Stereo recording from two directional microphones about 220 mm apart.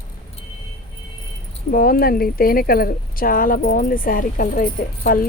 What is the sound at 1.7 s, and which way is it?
Speech, 40° left (ahead or behind).